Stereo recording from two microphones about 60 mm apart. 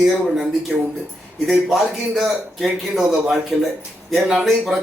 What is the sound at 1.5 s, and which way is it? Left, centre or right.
Speech, centre.